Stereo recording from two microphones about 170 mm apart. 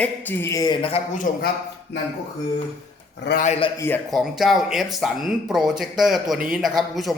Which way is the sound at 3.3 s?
80° left.